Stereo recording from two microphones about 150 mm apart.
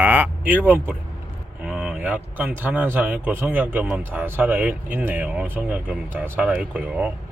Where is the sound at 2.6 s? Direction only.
15° right (ahead or behind).